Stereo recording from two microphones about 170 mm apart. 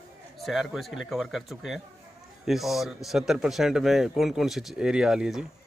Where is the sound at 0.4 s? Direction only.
Centre (ahead or behind).